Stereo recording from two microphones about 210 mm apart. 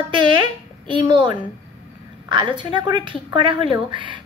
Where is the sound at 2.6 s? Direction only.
20° right (ahead or behind).